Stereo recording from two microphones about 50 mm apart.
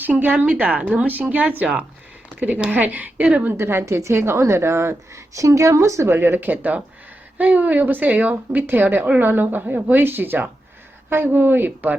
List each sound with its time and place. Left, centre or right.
0.0 s a woman's voice: right
3.6 s a woman's voice: right
3.8 s a woman's voice: right
4.1 s a woman's voice: right
6.1 s a woman's voice: right
8.6 s a woman's voice: right